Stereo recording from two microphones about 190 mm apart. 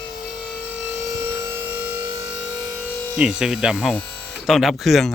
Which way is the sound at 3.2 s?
5° right (ahead or behind).